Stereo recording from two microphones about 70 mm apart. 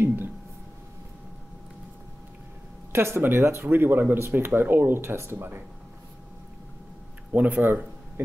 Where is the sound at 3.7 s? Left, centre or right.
Right.